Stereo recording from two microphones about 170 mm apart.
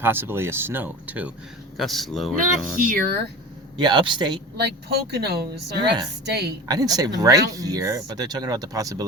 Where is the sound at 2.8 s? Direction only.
55° right (ahead or behind).